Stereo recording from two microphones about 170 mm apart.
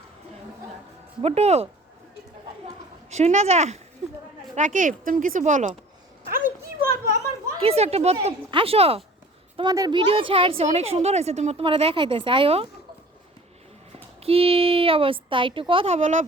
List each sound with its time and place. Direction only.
1.2 s a woman's voice: 40° right (ahead or behind)
3.1 s a woman's voice: 40° right (ahead or behind)
6.9 s a child's voice: 45° left (ahead or behind)
7.6 s a woman's voice: 35° right (ahead or behind)
9.6 s a woman's voice: 20° right (ahead or behind)
14.2 s a woman's voice: 35° right (ahead or behind)
16.0 s speech: 45° right (ahead or behind)